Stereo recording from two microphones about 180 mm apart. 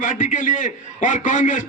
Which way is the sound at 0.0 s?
45° left (ahead or behind).